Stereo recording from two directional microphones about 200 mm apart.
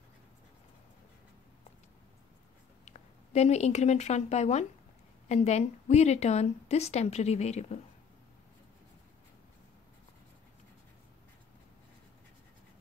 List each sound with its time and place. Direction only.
2.8 s a woman's voice: 35° left (ahead or behind)